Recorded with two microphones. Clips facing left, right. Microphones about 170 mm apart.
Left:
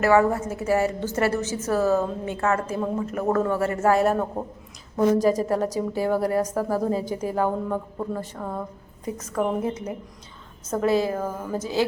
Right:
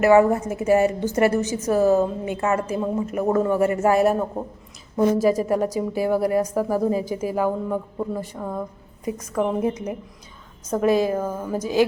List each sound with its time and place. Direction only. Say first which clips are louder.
0.0 s a woman's voice: right 4 dB; 15° right (ahead or behind)
10.7 s a woman's voice: right 3 dB; 15° right (ahead or behind)